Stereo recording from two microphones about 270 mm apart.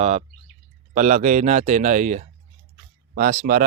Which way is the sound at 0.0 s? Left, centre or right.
Right.